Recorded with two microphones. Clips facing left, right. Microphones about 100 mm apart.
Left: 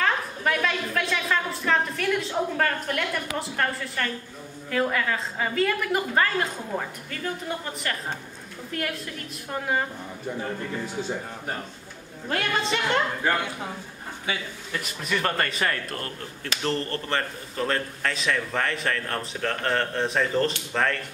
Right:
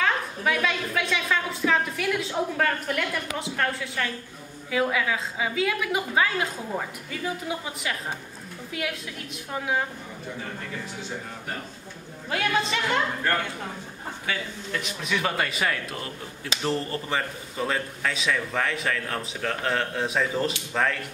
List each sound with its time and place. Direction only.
0.0 s a man's voice: centre (ahead or behind)
12.3 s a man's voice: centre (ahead or behind)
13.2 s speech: 10° left (ahead or behind)
14.7 s a man's voice: centre (ahead or behind)